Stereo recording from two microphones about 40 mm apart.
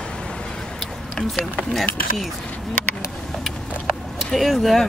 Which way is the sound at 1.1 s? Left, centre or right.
Centre.